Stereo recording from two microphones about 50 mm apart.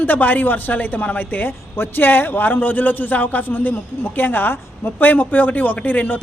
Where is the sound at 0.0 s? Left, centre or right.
Left.